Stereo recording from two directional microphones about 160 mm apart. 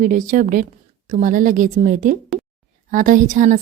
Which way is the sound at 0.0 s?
55° right (ahead or behind).